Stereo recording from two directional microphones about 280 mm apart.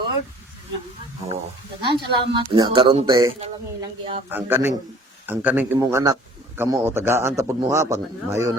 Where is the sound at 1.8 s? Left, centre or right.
Centre.